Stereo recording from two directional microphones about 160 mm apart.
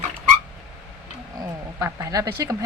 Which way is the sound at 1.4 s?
20° right (ahead or behind).